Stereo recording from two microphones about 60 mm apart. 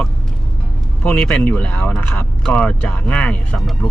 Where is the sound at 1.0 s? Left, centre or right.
Centre.